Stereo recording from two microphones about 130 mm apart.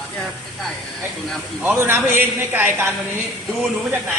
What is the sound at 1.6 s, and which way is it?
A man's voice, 15° right (ahead or behind).